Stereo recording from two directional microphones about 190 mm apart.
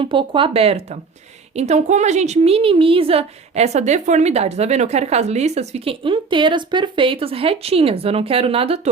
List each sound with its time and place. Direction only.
0.0 s a woman's voice: 25° right (ahead or behind)